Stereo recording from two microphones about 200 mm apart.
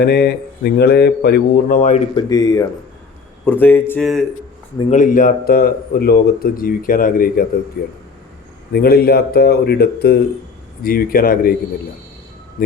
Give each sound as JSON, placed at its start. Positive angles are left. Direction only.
{"t": 0.0, "sound": "a man's voice", "side_deg": 55}
{"t": 1.6, "sound": "speech", "side_deg": 40}
{"t": 2.1, "sound": "speech", "side_deg": 20}
{"t": 4.9, "sound": "a man's voice", "side_deg": 40}
{"t": 12.6, "sound": "speech", "side_deg": 45}